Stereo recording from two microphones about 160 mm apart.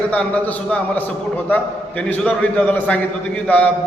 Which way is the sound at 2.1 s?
10° left (ahead or behind).